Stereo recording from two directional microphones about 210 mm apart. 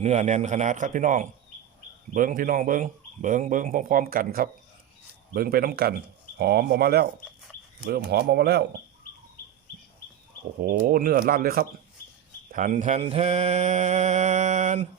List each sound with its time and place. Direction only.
0.0 s mantra: 35° right (ahead or behind)
5.3 s speech: 45° right (ahead or behind)
10.6 s speech: 45° right (ahead or behind)
12.5 s mantra: 35° right (ahead or behind)